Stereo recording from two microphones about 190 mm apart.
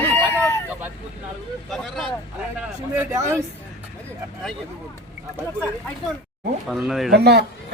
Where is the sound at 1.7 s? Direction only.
Centre (ahead or behind).